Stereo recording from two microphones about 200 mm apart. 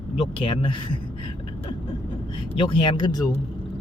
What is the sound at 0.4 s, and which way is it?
Speech, 25° left (ahead or behind).